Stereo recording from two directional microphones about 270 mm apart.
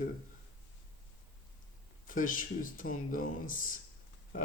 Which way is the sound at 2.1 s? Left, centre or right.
Left.